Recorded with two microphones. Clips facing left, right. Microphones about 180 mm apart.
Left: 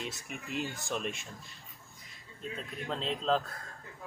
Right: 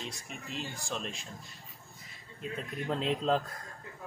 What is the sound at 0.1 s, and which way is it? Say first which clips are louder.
Speech: left 3 dB; 5° left (ahead or behind).